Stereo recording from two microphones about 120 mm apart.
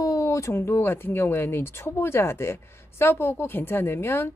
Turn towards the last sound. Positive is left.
turn(degrees=20)  # may be behind; listen again after turning